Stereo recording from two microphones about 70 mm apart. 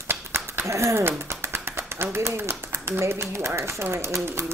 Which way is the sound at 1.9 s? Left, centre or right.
Right.